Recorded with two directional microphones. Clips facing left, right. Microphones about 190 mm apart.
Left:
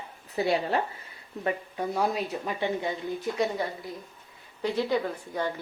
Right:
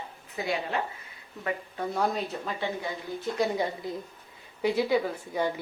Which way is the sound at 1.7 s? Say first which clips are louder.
Right 1 dB; 10° left (ahead or behind).